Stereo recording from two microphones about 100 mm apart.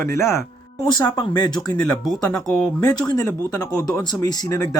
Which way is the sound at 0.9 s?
40° left (ahead or behind).